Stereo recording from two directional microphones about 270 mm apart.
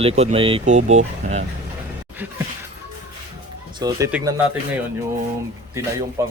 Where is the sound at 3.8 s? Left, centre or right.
Centre.